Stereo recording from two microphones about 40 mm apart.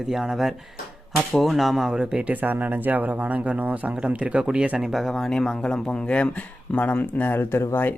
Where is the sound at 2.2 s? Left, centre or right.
Right.